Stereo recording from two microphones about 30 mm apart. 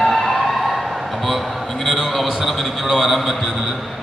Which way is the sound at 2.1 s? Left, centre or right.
Centre.